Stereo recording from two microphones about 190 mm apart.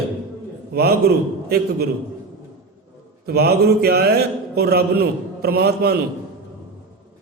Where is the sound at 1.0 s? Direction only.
55° right (ahead or behind).